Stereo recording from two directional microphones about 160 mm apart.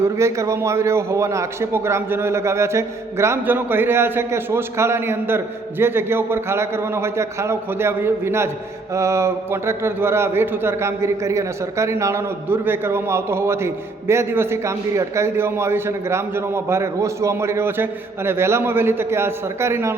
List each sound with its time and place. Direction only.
0.2 s a man's voice: 20° right (ahead or behind)